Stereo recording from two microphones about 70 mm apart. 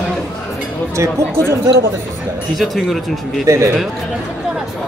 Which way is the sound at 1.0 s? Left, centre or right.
Right.